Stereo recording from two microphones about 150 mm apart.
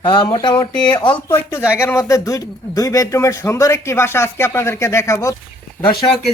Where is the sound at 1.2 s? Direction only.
15° left (ahead or behind).